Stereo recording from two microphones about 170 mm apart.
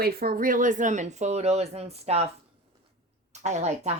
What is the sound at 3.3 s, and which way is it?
Speech, 40° right (ahead or behind).